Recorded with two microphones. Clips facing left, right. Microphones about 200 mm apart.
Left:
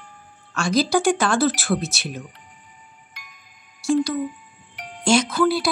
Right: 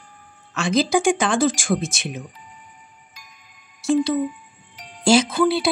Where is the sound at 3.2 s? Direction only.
65° left (ahead or behind).